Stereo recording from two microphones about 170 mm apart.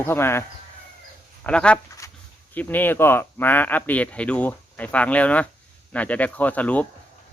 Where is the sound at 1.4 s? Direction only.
5° left (ahead or behind).